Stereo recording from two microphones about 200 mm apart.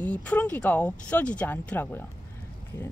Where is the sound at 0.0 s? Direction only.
5° left (ahead or behind).